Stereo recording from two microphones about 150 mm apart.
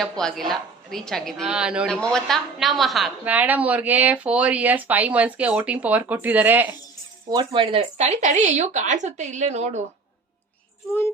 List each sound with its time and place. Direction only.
0.0 s a woman's voice: centre (ahead or behind)
1.9 s a woman's voice: 5° left (ahead or behind); by 6.7 s 10° right (ahead or behind)
7.3 s speech: 30° right (ahead or behind); by 9.8 s 50° right (ahead or behind)